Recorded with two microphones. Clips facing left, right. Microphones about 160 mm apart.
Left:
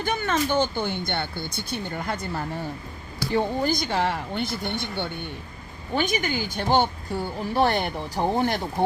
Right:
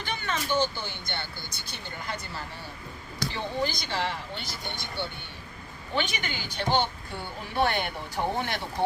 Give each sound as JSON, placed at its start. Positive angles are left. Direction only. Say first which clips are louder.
{"t": 0.0, "sound": "speech", "louder": "left 8 dB", "side_deg": 50}
{"t": 5.9, "sound": "speech", "louder": "left 6 dB", "side_deg": 45}